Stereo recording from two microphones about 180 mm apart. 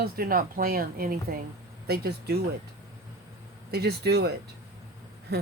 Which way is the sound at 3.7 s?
65° right (ahead or behind).